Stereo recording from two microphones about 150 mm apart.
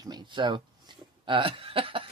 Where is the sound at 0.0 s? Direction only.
30° right (ahead or behind).